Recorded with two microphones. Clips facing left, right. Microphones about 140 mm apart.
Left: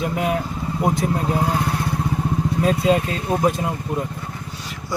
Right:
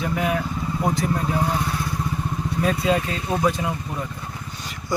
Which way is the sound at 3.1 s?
45° left (ahead or behind).